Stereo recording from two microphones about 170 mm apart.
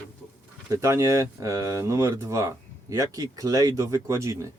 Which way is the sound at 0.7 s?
15° right (ahead or behind).